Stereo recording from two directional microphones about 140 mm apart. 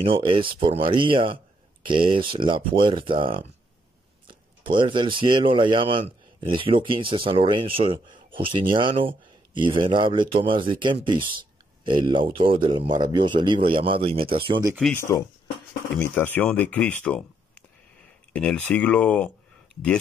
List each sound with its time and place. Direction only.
0.0 s speech: 40° right (ahead or behind)
14.7 s speech: centre (ahead or behind)
15.0 s speech: 20° left (ahead or behind)